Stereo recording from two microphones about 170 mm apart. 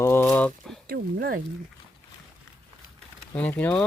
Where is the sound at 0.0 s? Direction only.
15° left (ahead or behind).